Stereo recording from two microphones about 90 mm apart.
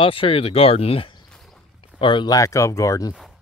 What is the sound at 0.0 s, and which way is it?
Speech, 80° left.